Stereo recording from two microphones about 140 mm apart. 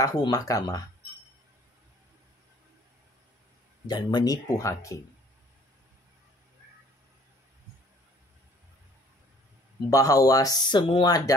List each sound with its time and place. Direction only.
0.0 s speech: 30° left (ahead or behind)
3.8 s speech: 30° left (ahead or behind)
9.8 s speech: 25° left (ahead or behind)